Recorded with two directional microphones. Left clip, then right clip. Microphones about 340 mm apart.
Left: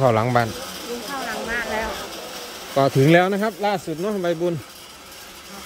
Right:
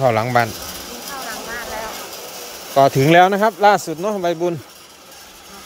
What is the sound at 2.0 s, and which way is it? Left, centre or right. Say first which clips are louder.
Vehicle: right 1 dB; right.